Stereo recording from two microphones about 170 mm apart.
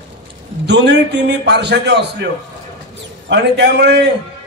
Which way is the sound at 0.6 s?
90° right.